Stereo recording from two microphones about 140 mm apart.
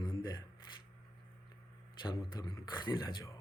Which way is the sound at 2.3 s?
30° left (ahead or behind).